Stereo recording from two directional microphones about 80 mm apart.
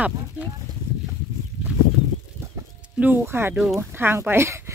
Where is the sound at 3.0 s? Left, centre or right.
Right.